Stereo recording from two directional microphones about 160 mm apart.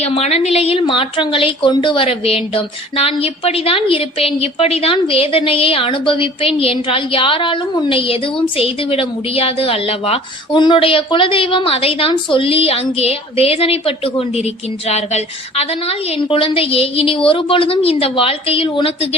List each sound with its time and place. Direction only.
0.0 s a woman's voice: 40° left (ahead or behind)